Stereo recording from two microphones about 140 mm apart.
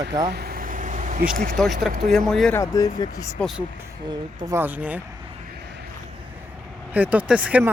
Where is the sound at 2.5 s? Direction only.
25° left (ahead or behind).